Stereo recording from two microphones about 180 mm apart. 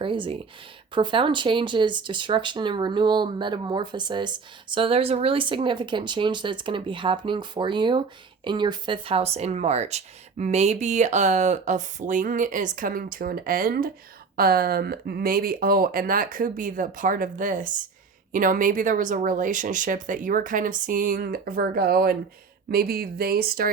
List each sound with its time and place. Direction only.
0.0 s speech: 30° right (ahead or behind); by 23.6 s 55° right (ahead or behind)